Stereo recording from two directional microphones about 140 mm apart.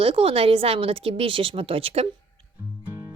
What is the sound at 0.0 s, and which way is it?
A woman's voice, 45° right (ahead or behind).